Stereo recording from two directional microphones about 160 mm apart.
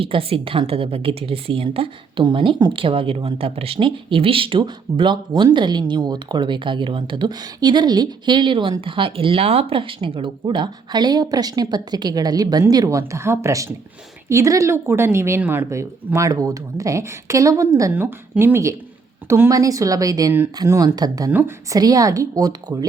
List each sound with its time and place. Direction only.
0.0 s a woman's voice: 35° right (ahead or behind)